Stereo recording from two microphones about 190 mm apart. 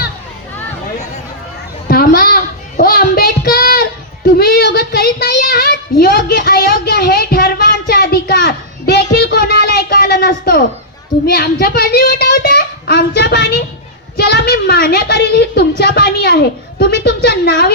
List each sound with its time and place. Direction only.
1.9 s child singing: 50° left (ahead or behind)
11.3 s a child's voice: 55° left (ahead or behind)